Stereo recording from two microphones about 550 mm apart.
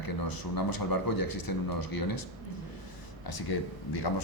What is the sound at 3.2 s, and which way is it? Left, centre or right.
Speech, left.